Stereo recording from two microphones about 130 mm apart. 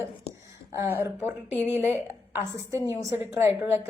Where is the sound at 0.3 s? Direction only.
50° left (ahead or behind).